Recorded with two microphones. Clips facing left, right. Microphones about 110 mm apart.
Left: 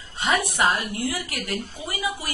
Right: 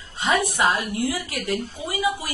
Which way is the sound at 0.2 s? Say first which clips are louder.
Right 1 dB; 20° right (ahead or behind).